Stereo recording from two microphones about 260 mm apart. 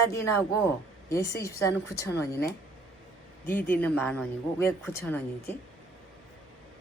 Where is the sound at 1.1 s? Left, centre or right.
Centre.